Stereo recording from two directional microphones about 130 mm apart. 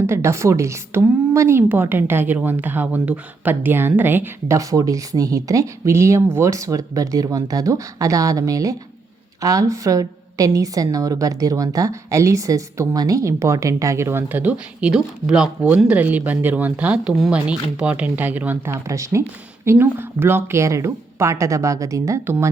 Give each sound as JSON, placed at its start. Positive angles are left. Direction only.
{"t": 0.1, "sound": "a woman's voice", "side_deg": -20}